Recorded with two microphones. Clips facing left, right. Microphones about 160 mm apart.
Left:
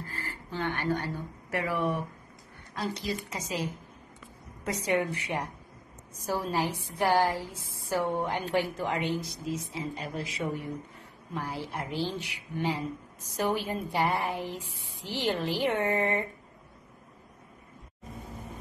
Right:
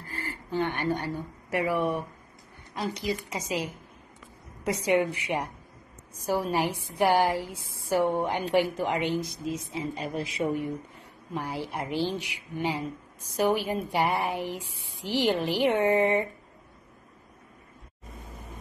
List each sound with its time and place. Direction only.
0.1 s a woman's voice: 20° right (ahead or behind)
4.7 s a woman's voice: 15° right (ahead or behind)
11.3 s a woman's voice: 20° right (ahead or behind)